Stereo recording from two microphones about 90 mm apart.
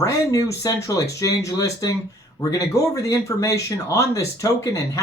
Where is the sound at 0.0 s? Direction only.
40° left (ahead or behind).